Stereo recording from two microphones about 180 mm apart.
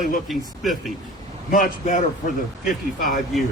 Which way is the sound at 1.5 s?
45° left (ahead or behind).